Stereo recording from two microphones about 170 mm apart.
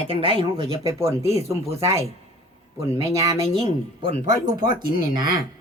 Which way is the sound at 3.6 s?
30° right (ahead or behind).